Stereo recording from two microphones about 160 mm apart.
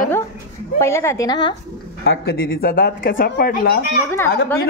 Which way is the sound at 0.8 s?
15° left (ahead or behind).